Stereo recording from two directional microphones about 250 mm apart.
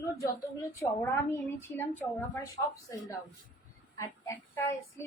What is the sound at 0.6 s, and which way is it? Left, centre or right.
Child singing, centre.